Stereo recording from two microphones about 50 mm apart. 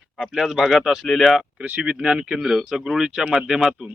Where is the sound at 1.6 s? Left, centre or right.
Centre.